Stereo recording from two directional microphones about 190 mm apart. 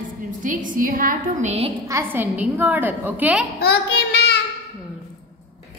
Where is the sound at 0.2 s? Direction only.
45° right (ahead or behind).